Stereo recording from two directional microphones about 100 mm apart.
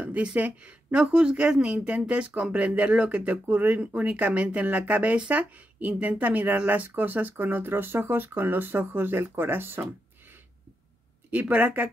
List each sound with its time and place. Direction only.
0.0 s speech: 10° right (ahead or behind)
11.2 s speech: 15° right (ahead or behind)